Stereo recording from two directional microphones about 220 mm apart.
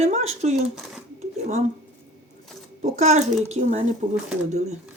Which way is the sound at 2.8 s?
30° right (ahead or behind).